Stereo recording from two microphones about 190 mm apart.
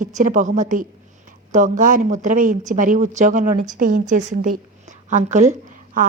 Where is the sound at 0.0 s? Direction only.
40° right (ahead or behind).